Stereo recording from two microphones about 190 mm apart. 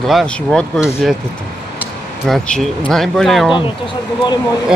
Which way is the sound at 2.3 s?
Centre (ahead or behind).